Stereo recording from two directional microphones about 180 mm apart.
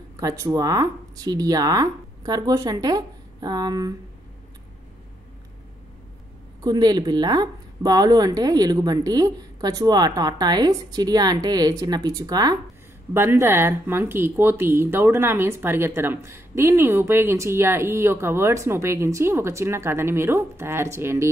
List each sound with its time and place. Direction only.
0.2 s speech: 20° right (ahead or behind)
6.6 s speech: 20° right (ahead or behind)